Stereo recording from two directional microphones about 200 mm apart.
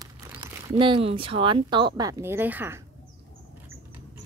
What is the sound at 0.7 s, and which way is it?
Speech, 25° right (ahead or behind).